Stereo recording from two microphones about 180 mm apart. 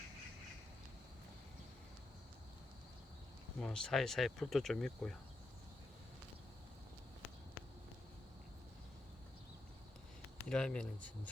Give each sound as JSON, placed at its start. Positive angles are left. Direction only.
{"t": 3.6, "sound": "speech", "side_deg": 5}
{"t": 10.5, "sound": "speech", "side_deg": 5}